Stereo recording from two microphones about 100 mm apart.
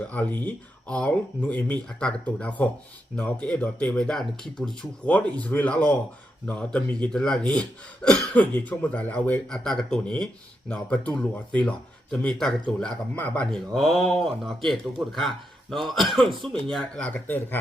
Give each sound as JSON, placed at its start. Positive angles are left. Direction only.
{"t": 0.1, "sound": "speech", "side_deg": 15}
{"t": 17.2, "sound": "speech", "side_deg": 20}